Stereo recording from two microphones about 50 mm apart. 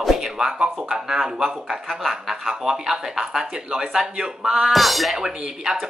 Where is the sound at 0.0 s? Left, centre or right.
Centre.